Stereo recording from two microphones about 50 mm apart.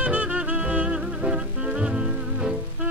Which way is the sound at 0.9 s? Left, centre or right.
Centre.